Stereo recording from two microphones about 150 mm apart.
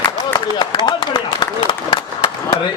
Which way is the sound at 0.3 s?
30° left (ahead or behind).